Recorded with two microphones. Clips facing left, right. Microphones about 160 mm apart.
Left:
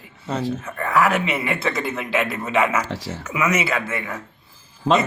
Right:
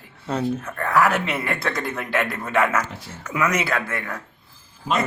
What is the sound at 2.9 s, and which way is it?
Speech, 90° left.